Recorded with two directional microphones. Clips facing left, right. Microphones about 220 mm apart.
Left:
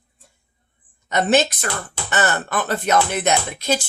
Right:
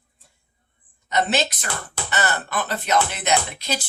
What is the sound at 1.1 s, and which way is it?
Speech, 50° left (ahead or behind).